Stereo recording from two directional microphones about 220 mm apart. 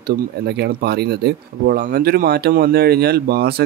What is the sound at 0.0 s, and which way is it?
Speech, 45° right (ahead or behind).